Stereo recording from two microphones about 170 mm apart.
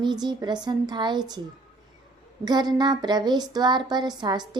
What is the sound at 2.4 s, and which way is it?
Speech, 25° right (ahead or behind).